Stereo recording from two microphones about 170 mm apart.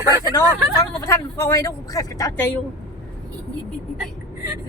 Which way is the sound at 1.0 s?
15° left (ahead or behind).